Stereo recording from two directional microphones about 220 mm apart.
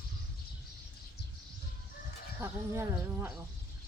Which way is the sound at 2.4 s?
10° right (ahead or behind).